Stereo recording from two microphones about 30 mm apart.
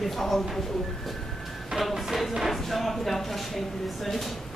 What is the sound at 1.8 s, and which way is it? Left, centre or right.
A woman's voice, centre.